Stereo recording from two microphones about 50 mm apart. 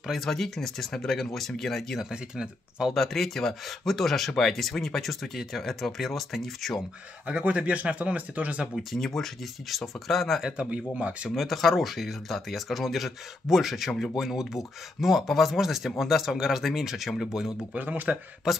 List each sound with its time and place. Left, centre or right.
0.1 s speech: centre
2.0 s speech: centre
2.9 s speech: centre
7.2 s speech: right
8.7 s speech: centre
10.6 s speech: right
11.3 s speech: centre
17.7 s speech: right